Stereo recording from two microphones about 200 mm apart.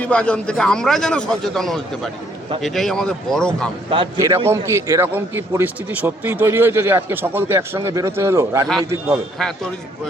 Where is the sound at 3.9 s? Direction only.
25° right (ahead or behind).